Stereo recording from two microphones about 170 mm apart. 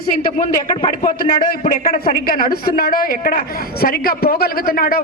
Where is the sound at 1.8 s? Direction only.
55° left (ahead or behind).